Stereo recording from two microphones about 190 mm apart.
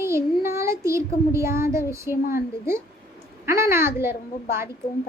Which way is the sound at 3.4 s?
15° right (ahead or behind).